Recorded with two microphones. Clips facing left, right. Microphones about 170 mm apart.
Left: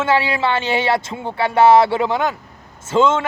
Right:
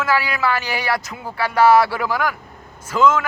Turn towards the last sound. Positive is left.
turn(degrees=25)  # may be behind; listen again after turning